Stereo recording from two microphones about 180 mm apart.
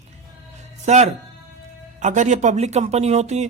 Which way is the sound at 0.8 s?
40° right (ahead or behind).